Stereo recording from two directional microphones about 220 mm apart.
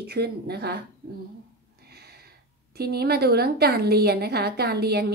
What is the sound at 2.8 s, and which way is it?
A woman's voice, 45° right (ahead or behind).